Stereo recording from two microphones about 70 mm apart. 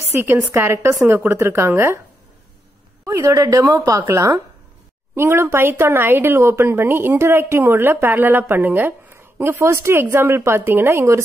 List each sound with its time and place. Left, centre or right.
0.0 s a woman's voice: right
3.1 s speech: right
5.1 s a woman's voice: right